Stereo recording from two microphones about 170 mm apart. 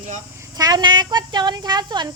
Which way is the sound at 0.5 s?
20° right (ahead or behind).